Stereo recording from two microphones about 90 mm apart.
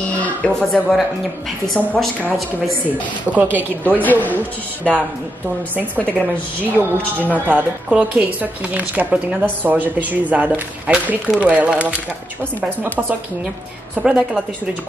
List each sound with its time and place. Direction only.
0.2 s speech: 15° left (ahead or behind)
3.3 s speech: 20° right (ahead or behind)
4.0 s speech: 20° left (ahead or behind)
5.9 s a woman's voice: 15° left (ahead or behind)
6.6 s a woman's voice: 20° right (ahead or behind)
13.9 s a woman's voice: 10° right (ahead or behind)